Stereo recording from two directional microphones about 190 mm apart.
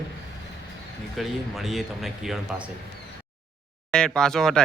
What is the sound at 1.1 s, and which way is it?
A man's voice, centre (ahead or behind).